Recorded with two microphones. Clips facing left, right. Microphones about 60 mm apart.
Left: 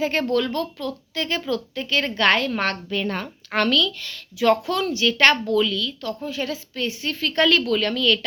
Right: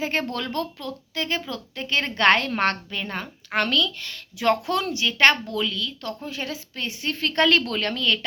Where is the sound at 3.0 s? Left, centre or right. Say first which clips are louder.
Left 4 dB; centre.